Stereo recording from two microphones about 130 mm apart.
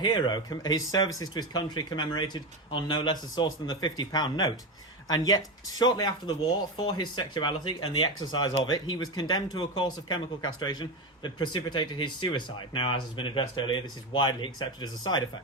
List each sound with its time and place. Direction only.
0.0 s speech: 35° left (ahead or behind)